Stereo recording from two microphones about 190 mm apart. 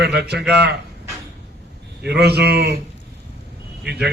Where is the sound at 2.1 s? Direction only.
60° right (ahead or behind).